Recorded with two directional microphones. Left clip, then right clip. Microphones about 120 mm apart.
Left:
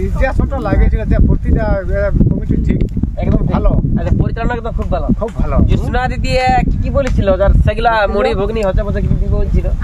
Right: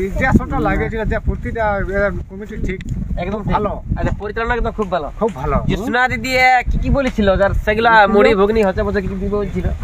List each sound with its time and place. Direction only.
0.2 s speech: 25° left (ahead or behind)
5.9 s speech: 40° left (ahead or behind)